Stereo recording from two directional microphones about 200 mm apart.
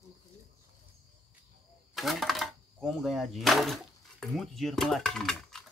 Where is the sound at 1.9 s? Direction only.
Centre (ahead or behind).